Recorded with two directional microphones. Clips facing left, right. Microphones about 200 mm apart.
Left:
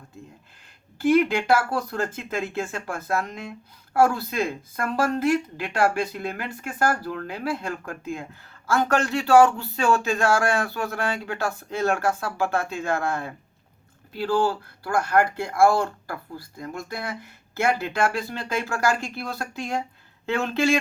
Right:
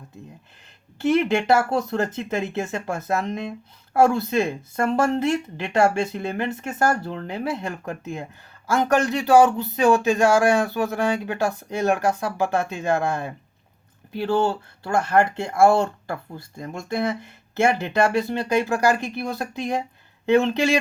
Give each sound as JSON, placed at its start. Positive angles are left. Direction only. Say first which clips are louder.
{"t": 0.9, "sound": "speech", "louder": "even", "side_deg": -25}